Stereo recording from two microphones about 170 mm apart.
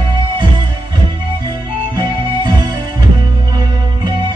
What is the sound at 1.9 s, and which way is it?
Music, 25° right (ahead or behind).